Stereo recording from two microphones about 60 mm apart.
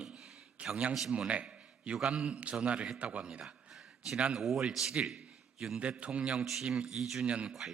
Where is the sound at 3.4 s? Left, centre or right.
Centre.